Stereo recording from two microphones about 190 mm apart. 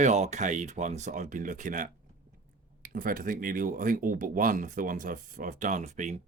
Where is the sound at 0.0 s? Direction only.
35° right (ahead or behind).